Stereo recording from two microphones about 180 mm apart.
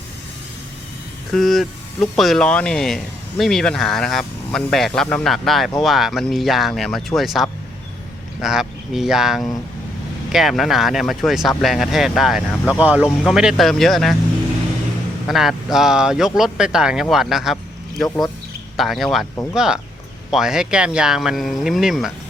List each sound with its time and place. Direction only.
1.3 s speech: centre (ahead or behind)
15.3 s speech: centre (ahead or behind)